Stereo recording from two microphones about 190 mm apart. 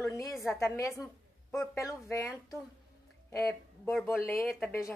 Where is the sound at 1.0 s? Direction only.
5° left (ahead or behind).